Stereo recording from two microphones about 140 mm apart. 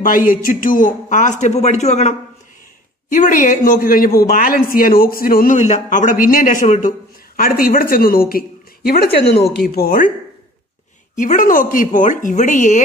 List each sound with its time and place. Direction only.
0.0 s speech: 80° left; by 2.1 s 55° left (ahead or behind)
3.1 s a woman's voice: 70° left (ahead or behind)
7.3 s speech: 90° left
11.1 s a woman's voice: 70° left (ahead or behind)